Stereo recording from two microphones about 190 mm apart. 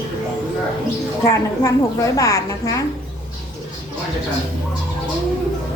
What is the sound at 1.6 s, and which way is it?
A woman's voice, 15° left (ahead or behind).